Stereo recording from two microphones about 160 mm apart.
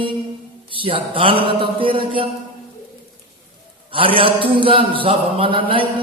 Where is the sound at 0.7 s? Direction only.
35° right (ahead or behind).